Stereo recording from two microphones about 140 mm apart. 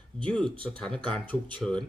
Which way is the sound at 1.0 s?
35° right (ahead or behind).